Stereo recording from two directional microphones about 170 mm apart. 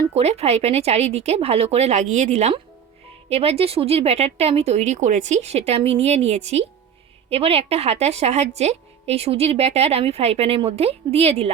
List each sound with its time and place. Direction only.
0.1 s a woman's voice: 40° right (ahead or behind)